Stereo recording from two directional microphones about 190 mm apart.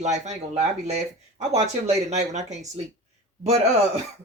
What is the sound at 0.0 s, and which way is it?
Speech, 35° right (ahead or behind).